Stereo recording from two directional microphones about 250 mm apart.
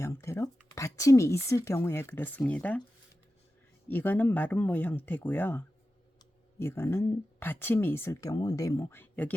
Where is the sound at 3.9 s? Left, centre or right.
Centre.